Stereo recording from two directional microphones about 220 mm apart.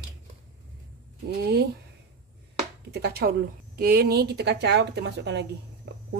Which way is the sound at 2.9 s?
45° right (ahead or behind).